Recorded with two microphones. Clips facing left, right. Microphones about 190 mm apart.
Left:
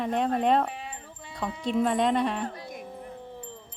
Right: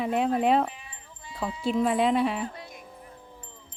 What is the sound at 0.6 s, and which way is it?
Wind chime, 65° left (ahead or behind).